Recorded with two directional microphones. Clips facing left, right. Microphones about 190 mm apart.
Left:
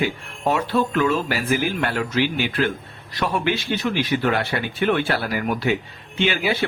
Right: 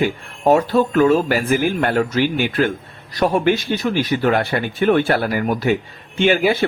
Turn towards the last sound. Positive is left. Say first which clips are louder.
# right 6 dB
turn(degrees=-50)  # may be behind; listen again after turning